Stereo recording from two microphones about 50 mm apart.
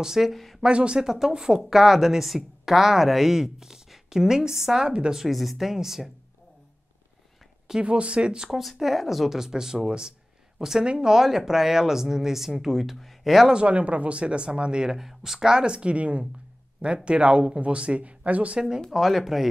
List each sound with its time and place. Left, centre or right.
0.0 s speech: centre
0.6 s speech: centre
5.2 s speech: centre
7.8 s speech: right
8.5 s speech: centre
13.5 s speech: right
18.9 s speech: centre